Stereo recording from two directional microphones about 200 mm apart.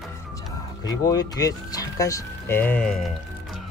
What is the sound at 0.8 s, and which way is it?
Speech, 20° left (ahead or behind).